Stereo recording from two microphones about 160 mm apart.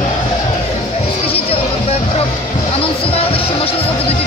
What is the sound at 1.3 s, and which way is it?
Music, 35° left (ahead or behind).